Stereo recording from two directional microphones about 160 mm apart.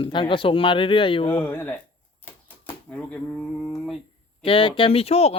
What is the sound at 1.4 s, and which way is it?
Speech, 15° left (ahead or behind).